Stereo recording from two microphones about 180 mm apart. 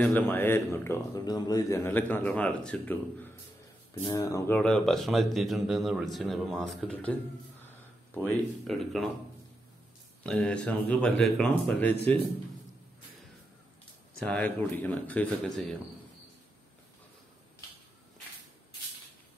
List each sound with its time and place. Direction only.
0.0 s a man's voice: 10° left (ahead or behind)
4.6 s speech: 5° left (ahead or behind)
10.2 s speech: 5° left (ahead or behind)
14.2 s a man's voice: 10° left (ahead or behind)